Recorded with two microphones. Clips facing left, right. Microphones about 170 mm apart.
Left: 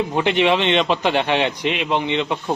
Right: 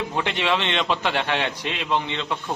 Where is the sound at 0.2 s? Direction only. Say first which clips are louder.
Left 7 dB; 20° left (ahead or behind).